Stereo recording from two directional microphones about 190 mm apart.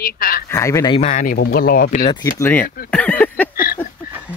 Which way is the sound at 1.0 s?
40° left (ahead or behind).